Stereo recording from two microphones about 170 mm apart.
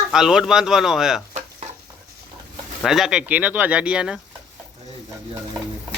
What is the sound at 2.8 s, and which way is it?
Speech, centre (ahead or behind).